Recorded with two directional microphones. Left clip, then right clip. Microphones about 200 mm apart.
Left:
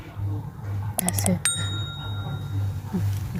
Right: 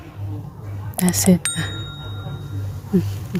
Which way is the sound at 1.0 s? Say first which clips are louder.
Right 6 dB; centre (ahead or behind).